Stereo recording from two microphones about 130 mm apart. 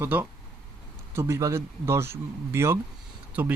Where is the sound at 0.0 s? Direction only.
15° right (ahead or behind).